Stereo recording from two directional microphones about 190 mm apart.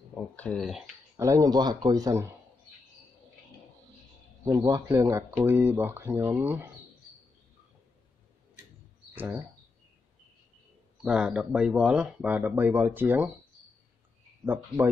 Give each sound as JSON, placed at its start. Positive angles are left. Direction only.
{"t": 0.1, "sound": "speech", "side_deg": 5}
{"t": 1.1, "sound": "speech", "side_deg": -15}
{"t": 4.5, "sound": "speech", "side_deg": -20}
{"t": 9.1, "sound": "speech", "side_deg": -10}
{"t": 11.0, "sound": "speech", "side_deg": -5}
{"t": 14.4, "sound": "speech", "side_deg": -10}